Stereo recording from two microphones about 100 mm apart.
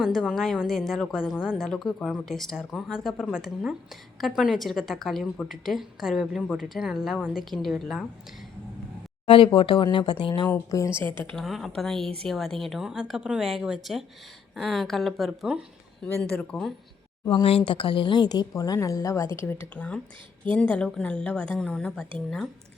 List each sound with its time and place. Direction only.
0.0 s a woman's voice: centre (ahead or behind)
9.2 s speech: 60° left (ahead or behind)
10.7 s a woman's voice: 30° left (ahead or behind)
11.3 s a woman's voice: centre (ahead or behind)
16.0 s a woman's voice: 15° left (ahead or behind)
17.7 s a woman's voice: 55° left (ahead or behind); by 19.3 s 30° left (ahead or behind)
19.7 s a woman's voice: 10° left (ahead or behind)